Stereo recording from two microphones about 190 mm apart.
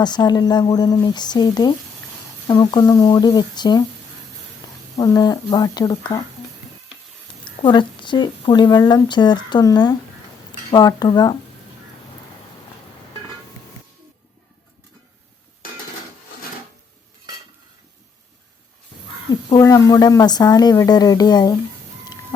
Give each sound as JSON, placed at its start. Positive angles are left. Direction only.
{"t": 0.0, "sound": "a woman's voice", "side_deg": 20}
{"t": 4.6, "sound": "a sound", "side_deg": 20}
{"t": 4.9, "sound": "a woman's voice", "side_deg": 20}
{"t": 7.4, "sound": "a woman's voice", "side_deg": 25}
{"t": 19.5, "sound": "a woman's voice", "side_deg": 20}